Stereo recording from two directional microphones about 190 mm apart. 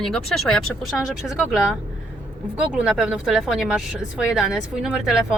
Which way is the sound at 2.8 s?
5° right (ahead or behind).